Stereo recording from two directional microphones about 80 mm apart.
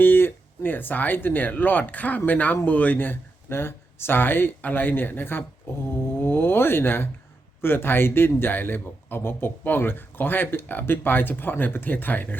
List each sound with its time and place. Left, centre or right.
0.0 s a man's voice: left